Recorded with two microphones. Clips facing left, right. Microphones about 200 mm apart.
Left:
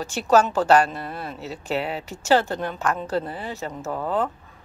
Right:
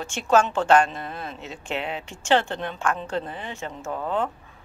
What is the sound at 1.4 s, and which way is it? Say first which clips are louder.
Speech: left 5 dB; 35° left (ahead or behind).